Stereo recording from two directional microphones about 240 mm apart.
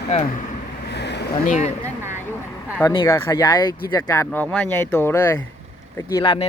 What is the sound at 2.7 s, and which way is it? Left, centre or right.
Speech, centre.